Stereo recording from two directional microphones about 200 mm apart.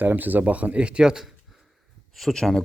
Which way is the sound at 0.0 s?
10° right (ahead or behind).